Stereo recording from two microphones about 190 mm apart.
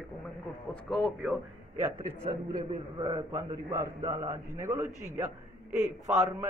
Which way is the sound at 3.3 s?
15° right (ahead or behind).